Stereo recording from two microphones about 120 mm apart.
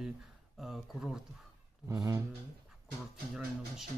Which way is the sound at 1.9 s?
30° right (ahead or behind).